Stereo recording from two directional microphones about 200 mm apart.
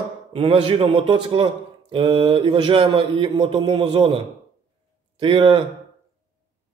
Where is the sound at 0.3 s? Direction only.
30° right (ahead or behind).